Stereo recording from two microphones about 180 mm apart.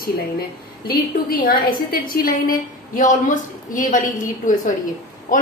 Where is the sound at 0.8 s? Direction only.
55° left (ahead or behind).